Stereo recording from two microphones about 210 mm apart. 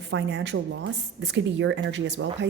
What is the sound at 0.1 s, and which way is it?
A woman's voice, 60° right (ahead or behind).